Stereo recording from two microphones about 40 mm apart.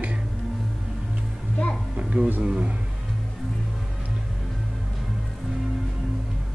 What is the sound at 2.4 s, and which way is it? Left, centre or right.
Speech, right.